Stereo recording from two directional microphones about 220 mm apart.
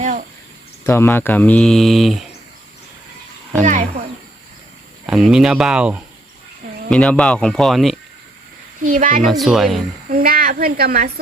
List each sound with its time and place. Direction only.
0.0 s a sound: 35° right (ahead or behind)
0.9 s speech: 10° left (ahead or behind)
3.6 s speech: 35° right (ahead or behind)
5.0 s speech: 5° right (ahead or behind)
8.8 s speech: 35° right (ahead or behind)
9.2 s speech: centre (ahead or behind)
10.1 s speech: 40° right (ahead or behind)